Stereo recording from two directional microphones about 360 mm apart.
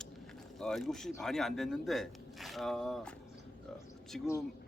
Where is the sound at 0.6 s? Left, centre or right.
Centre.